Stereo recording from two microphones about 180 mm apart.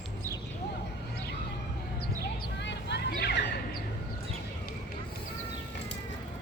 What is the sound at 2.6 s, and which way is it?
Vehicle, 70° left (ahead or behind).